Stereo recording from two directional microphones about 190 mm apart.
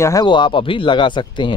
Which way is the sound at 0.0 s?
20° left (ahead or behind).